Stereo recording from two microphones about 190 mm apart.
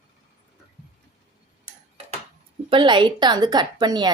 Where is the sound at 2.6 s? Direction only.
25° right (ahead or behind).